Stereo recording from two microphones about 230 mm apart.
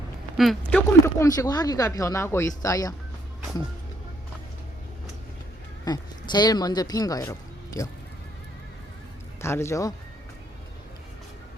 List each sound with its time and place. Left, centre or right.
0.3 s speech: centre
5.8 s speech: centre
9.4 s speech: centre